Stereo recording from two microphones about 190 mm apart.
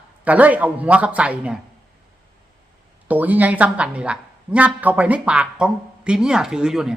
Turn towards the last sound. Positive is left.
turn(degrees=-5)  # may be behind; listen again after turning